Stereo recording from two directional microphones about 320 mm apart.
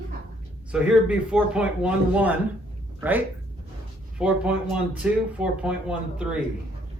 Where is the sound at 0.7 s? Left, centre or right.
Centre.